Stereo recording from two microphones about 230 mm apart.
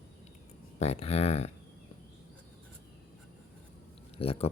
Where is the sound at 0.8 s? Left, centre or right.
Left.